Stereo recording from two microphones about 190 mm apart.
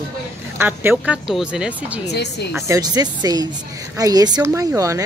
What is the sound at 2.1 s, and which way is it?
Speech, 60° left (ahead or behind).